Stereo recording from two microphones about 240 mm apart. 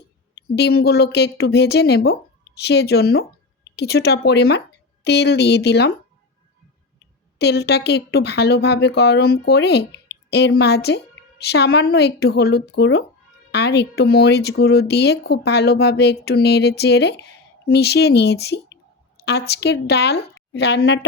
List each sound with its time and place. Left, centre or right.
0.4 s speech: left
7.3 s a woman's voice: left